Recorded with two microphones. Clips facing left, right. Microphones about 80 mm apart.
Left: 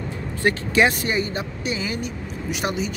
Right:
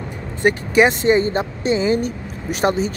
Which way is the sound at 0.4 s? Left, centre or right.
Centre.